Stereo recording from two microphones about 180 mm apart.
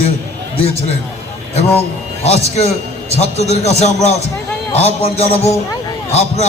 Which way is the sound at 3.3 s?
35° left (ahead or behind).